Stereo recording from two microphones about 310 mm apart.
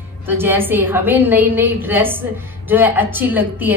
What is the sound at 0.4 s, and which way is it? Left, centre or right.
A woman's voice, centre.